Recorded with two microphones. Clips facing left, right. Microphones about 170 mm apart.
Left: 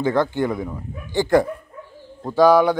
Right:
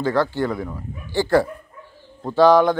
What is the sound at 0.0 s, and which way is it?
A man's voice, 20° left (ahead or behind).